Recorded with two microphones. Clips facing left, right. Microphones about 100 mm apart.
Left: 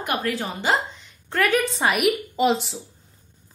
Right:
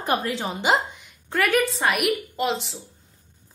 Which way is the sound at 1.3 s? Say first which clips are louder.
Even; centre (ahead or behind).